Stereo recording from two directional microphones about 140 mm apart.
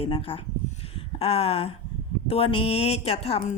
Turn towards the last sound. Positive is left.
turn(degrees=45)  # may be behind; listen again after turning